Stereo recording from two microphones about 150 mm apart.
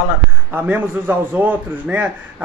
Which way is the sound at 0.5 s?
10° right (ahead or behind).